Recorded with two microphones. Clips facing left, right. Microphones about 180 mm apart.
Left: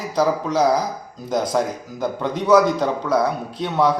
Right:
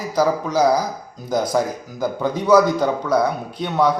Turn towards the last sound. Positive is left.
turn(degrees=0)  # may be behind; listen again after turning